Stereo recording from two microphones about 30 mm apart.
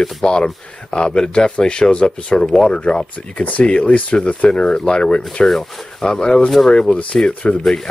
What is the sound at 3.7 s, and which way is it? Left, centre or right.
Speech, left.